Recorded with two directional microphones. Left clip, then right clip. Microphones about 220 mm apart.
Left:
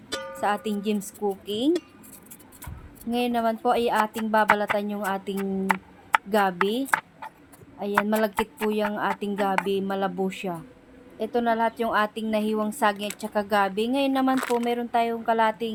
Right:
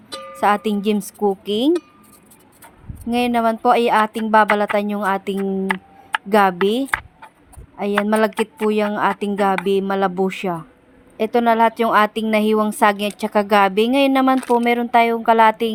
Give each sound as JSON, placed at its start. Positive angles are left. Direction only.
{"t": 0.3, "sound": "speech", "side_deg": -25}
{"t": 3.1, "sound": "speech", "side_deg": -25}
{"t": 8.0, "sound": "speech", "side_deg": -25}